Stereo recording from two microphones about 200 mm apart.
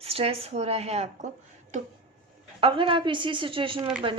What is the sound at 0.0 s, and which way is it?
Speech, 30° right (ahead or behind).